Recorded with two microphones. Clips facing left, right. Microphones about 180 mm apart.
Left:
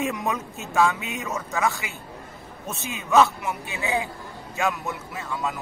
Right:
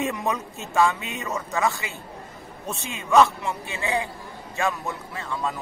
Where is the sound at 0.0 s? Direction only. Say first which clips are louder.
Even; centre (ahead or behind).